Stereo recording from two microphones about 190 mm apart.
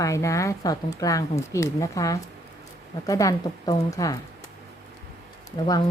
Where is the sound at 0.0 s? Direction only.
15° left (ahead or behind).